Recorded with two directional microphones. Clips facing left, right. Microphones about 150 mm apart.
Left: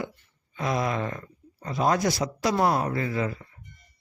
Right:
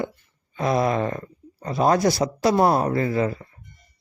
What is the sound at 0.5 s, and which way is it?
Speech, 35° right (ahead or behind).